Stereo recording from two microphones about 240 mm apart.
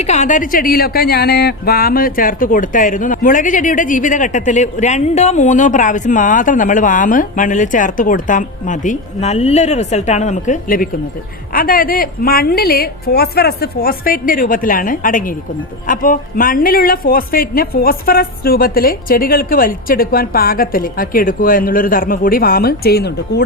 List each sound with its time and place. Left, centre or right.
0.0 s speech: left